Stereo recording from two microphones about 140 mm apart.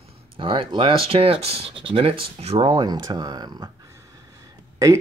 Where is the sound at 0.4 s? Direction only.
35° right (ahead or behind).